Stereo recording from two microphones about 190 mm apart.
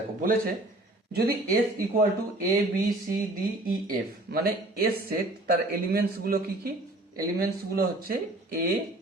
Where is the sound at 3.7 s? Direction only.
50° right (ahead or behind).